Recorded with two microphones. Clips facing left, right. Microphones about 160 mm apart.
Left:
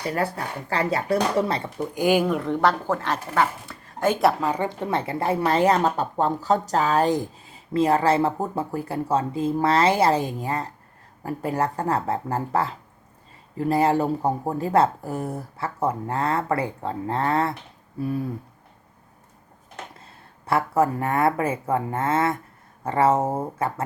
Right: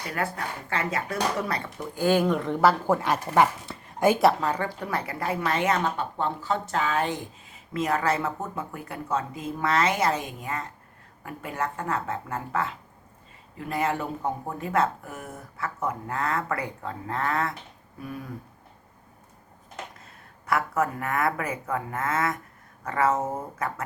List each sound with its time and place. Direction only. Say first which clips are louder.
0.1 s speech: left 2 dB; 35° left (ahead or behind)
2.0 s speech: left 2 dB; 10° left (ahead or behind); by 3.4 s 10° right (ahead or behind)
3.7 s a sound: right 2 dB; 25° right (ahead or behind)
4.0 s speech: even; 10° right (ahead or behind)
4.3 s speech: left 2 dB; 10° left (ahead or behind); by 18.3 s 30° left (ahead or behind)
20.4 s speech: left 5 dB; 30° left (ahead or behind)